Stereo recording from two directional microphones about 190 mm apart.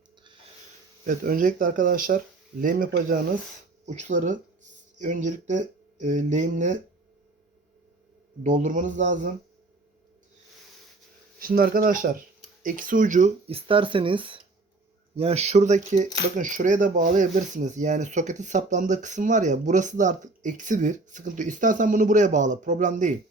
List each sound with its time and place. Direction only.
1.0 s speech: 45° right (ahead or behind)
8.4 s speech: 45° right (ahead or behind)
11.3 s speech: 50° right (ahead or behind)